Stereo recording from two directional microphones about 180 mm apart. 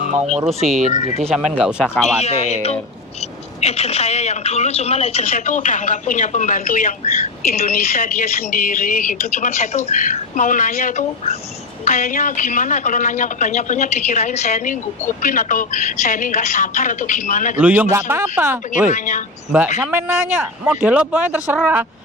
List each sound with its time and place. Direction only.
1.5 s speech: centre (ahead or behind)
2.2 s speech: 35° left (ahead or behind)
17.6 s speech: 10° right (ahead or behind)
18.9 s speech: 45° left (ahead or behind)
19.5 s speech: 10° right (ahead or behind)